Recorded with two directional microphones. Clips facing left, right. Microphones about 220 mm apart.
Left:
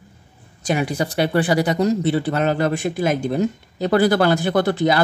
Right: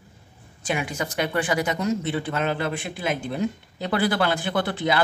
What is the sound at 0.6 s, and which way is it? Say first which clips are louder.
Speech: left 6 dB; 40° left (ahead or behind).